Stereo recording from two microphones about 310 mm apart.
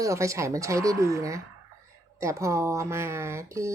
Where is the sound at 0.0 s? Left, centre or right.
Centre.